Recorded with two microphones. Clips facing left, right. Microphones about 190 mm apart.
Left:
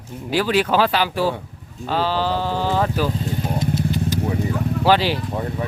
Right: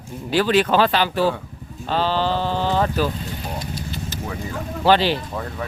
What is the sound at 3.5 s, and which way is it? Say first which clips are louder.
Vehicle: left 8 dB; 20° left (ahead or behind).